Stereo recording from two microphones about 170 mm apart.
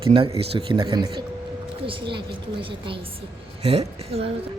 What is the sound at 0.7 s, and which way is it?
A woman's voice, 30° right (ahead or behind).